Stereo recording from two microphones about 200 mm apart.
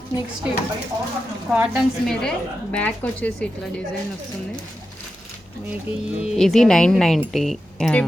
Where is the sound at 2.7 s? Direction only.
10° left (ahead or behind).